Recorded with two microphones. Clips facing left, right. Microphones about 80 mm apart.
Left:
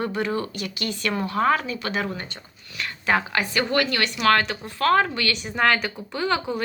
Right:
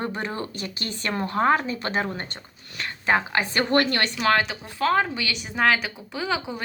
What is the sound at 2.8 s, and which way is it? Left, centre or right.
Speech, right.